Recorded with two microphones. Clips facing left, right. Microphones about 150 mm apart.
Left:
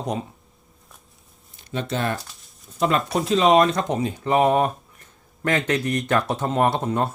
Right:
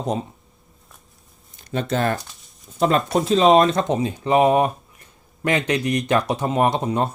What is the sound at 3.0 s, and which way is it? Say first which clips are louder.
Speech: right 3 dB; centre (ahead or behind).